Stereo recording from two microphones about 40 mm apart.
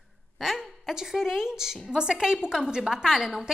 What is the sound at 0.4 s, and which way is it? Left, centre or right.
A woman's voice, centre.